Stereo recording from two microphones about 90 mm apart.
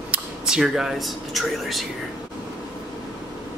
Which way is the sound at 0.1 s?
15° right (ahead or behind).